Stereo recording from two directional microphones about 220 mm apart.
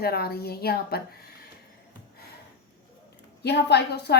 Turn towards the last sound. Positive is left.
turn(degrees=50)  # may be behind; listen again after turning